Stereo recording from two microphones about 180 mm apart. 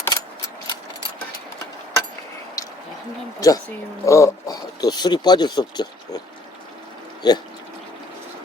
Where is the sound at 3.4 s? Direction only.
20° left (ahead or behind).